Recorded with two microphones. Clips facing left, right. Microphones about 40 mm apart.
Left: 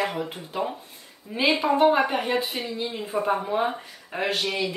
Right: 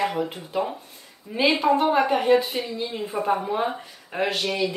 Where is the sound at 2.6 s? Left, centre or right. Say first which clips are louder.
Even; centre.